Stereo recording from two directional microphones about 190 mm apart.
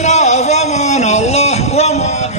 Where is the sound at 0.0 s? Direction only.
40° left (ahead or behind).